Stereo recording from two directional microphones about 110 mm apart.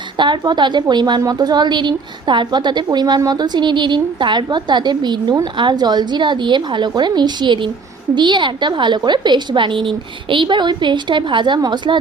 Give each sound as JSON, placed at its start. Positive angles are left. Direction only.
{"t": 0.2, "sound": "a woman's voice", "side_deg": -45}